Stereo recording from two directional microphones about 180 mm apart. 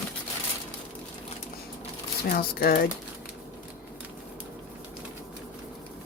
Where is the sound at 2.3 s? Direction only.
55° left (ahead or behind).